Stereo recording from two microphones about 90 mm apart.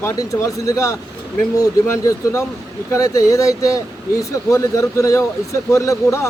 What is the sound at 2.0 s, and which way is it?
Speech, 35° left (ahead or behind).